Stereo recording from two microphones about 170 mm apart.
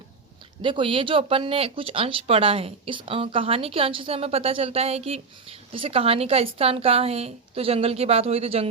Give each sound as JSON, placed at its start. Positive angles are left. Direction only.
{"t": 0.6, "sound": "speech", "side_deg": -30}